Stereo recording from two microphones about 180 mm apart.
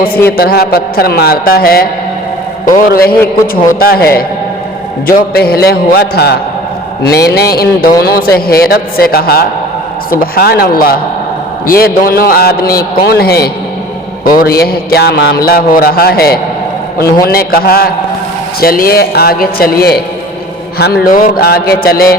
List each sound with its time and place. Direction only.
0.3 s a man's voice: 60° left (ahead or behind)
5.3 s a man's voice: 60° left (ahead or behind)